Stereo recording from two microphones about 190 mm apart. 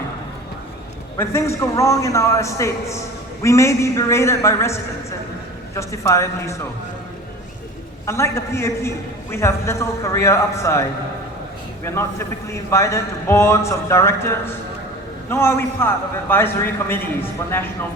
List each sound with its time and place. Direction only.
1.1 s a man's voice: 15° left (ahead or behind)
8.0 s a man's voice: 15° left (ahead or behind)
11.9 s a man's voice: 15° left (ahead or behind)